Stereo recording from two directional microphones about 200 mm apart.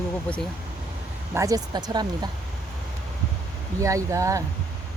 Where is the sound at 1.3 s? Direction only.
15° right (ahead or behind).